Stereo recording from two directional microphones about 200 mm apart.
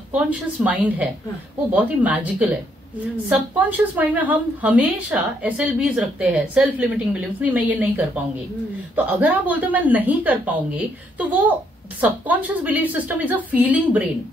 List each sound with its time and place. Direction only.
0.1 s a woman's voice: 5° right (ahead or behind)